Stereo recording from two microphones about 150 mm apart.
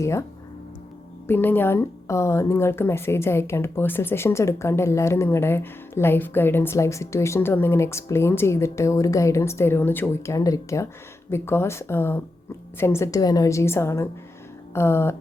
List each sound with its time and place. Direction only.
0.0 s a woman's voice: 20° left (ahead or behind)
1.3 s a woman's voice: 15° left (ahead or behind)